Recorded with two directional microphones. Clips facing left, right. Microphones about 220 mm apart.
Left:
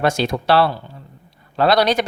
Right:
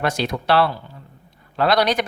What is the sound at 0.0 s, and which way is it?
Speech, 30° left (ahead or behind).